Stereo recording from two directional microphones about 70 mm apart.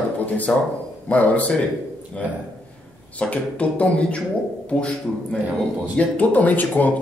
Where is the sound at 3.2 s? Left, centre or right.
Centre.